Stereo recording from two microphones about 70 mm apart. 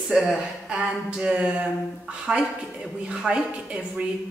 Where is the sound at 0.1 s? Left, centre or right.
Centre.